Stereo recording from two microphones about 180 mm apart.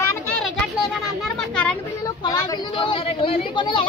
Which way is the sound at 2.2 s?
25° left (ahead or behind).